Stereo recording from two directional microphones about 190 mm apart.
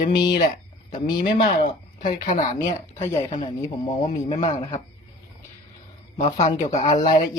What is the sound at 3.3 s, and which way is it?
Speech, 25° left (ahead or behind).